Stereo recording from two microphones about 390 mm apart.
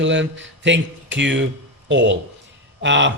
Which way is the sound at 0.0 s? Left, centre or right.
Right.